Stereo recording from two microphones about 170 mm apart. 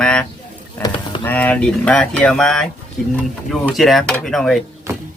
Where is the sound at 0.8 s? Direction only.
30° left (ahead or behind).